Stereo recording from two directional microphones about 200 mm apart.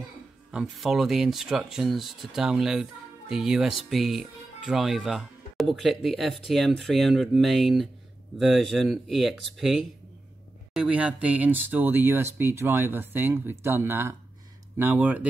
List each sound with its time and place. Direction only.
0.5 s speech: 5° right (ahead or behind)